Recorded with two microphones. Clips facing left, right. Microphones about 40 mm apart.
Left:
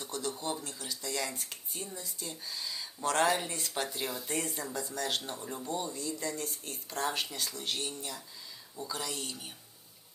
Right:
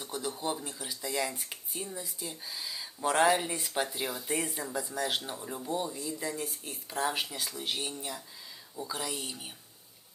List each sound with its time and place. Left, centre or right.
0.0 s speech: centre